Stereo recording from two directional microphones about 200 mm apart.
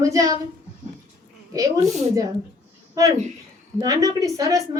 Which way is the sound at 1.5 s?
15° right (ahead or behind).